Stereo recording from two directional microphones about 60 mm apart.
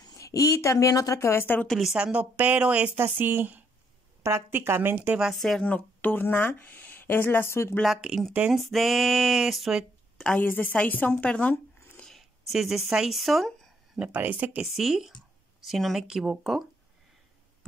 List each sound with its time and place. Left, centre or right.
0.2 s speech: left
1.2 s speech: left
2.1 s speech: right
3.0 s speech: right
4.2 s speech: right
5.3 s speech: centre
5.6 s speech: left
7.8 s speech: centre
8.3 s speech: centre
8.5 s speech: centre
10.4 s speech: left
12.0 s speech: centre
14.1 s speech: right
14.7 s speech: centre